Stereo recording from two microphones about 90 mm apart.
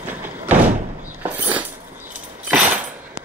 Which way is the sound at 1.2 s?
20° right (ahead or behind).